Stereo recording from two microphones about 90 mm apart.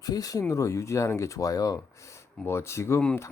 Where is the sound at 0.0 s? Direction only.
45° left (ahead or behind).